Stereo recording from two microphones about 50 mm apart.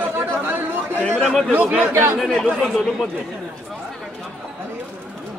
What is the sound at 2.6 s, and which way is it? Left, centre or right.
Speech, centre.